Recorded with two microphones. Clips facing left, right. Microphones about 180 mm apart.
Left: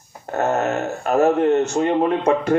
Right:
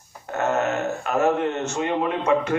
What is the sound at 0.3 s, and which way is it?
Speech, 35° left (ahead or behind).